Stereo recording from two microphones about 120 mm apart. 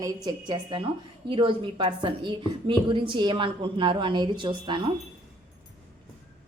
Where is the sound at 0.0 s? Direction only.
35° right (ahead or behind).